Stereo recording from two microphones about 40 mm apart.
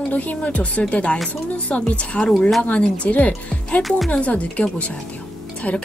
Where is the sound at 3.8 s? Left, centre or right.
Centre.